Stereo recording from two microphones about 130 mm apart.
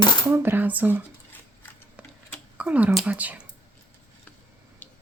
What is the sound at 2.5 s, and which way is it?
Speech, 10° right (ahead or behind).